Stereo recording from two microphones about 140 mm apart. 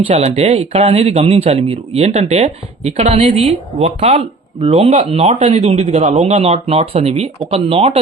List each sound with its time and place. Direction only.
0.0 s speech: 45° right (ahead or behind)